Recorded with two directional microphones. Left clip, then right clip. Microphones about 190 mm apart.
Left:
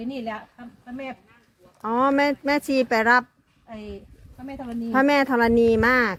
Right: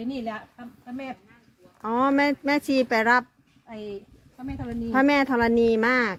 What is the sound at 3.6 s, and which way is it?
Speech, 35° left (ahead or behind).